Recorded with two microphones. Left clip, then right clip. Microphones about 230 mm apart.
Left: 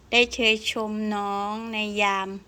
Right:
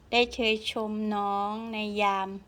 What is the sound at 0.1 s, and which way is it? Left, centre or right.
A woman's voice, centre.